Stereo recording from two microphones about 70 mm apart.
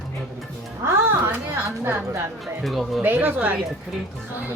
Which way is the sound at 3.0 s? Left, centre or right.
Right.